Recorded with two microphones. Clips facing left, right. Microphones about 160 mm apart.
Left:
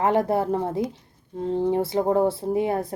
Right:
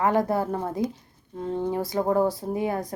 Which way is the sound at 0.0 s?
25° left (ahead or behind).